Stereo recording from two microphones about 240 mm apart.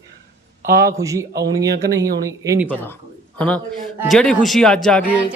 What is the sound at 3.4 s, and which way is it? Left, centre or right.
A man's voice, centre.